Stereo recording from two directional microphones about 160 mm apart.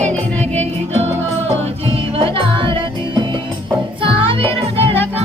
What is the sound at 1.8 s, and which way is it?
Music, 35° right (ahead or behind).